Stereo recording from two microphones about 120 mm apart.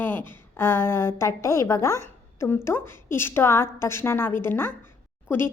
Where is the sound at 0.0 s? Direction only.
15° left (ahead or behind).